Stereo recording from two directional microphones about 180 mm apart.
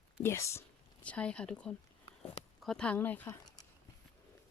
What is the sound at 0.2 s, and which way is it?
Speech, 15° left (ahead or behind).